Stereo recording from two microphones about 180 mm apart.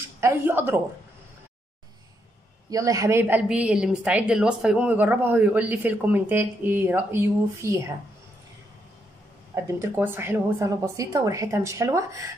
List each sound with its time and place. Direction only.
0.2 s a woman's voice: 15° right (ahead or behind)
2.7 s a woman's voice: 20° right (ahead or behind)
9.7 s a woman's voice: 15° right (ahead or behind)